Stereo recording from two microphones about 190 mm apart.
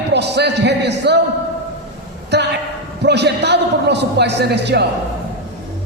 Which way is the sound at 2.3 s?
60° right (ahead or behind).